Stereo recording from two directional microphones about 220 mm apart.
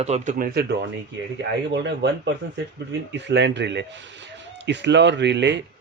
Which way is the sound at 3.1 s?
55° right (ahead or behind).